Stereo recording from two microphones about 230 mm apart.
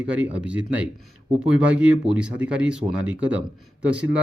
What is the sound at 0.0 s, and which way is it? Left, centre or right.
Speech, centre.